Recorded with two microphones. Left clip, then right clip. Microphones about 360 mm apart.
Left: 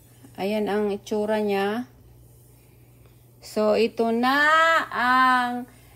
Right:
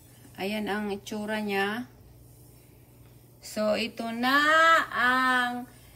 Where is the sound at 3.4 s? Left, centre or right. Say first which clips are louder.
Left 7 dB; centre.